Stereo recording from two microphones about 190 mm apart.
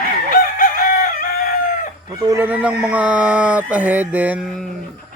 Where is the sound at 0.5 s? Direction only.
45° left (ahead or behind).